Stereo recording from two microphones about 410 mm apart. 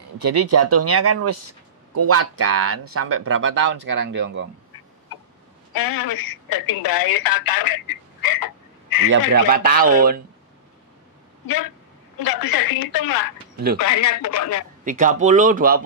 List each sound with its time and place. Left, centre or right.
0.2 s a man's voice: right
5.7 s speech: left
9.0 s a man's voice: right
11.4 s a woman's voice: left
14.9 s a man's voice: centre